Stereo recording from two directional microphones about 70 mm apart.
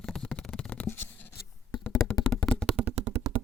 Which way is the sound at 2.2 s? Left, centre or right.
Centre.